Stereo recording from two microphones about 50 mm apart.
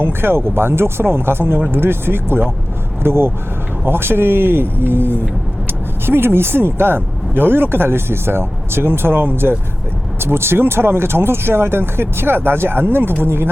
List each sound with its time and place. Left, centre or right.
0.0 s speech: right